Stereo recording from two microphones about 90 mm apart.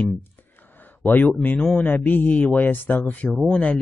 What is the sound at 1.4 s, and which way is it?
Speech, 20° left (ahead or behind).